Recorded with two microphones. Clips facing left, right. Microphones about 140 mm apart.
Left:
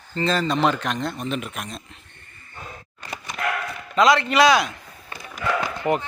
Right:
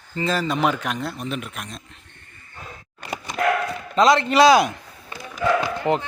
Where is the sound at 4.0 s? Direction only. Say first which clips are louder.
Right 1 dB; 25° right (ahead or behind).